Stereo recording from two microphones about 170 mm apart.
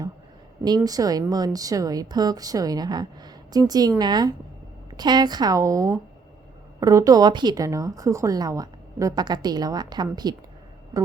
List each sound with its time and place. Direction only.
0.9 s a woman's voice: 20° right (ahead or behind)